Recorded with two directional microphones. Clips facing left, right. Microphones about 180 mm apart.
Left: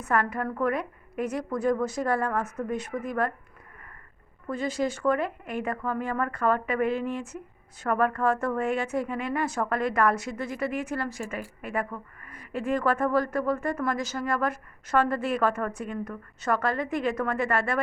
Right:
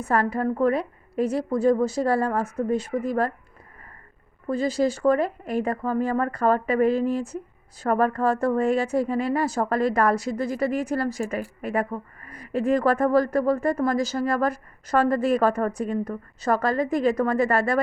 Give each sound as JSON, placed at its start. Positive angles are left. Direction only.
{"t": 0.0, "sound": "a woman's voice", "side_deg": -30}
{"t": 4.4, "sound": "a woman's voice", "side_deg": -35}